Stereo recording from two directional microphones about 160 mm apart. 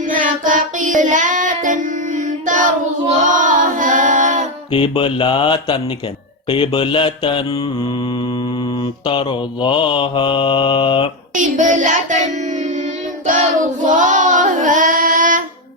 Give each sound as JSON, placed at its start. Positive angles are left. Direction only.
{"t": 0.1, "sound": "child singing", "side_deg": -55}
{"t": 3.3, "sound": "singing", "side_deg": -55}
{"t": 4.7, "sound": "mantra", "side_deg": 35}
{"t": 11.3, "sound": "child singing", "side_deg": -50}